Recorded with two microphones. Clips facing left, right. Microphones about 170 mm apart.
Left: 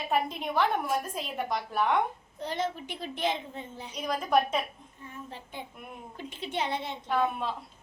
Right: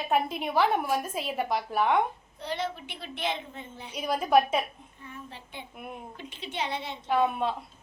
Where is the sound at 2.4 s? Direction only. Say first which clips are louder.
Left 1 dB; 45° left (ahead or behind).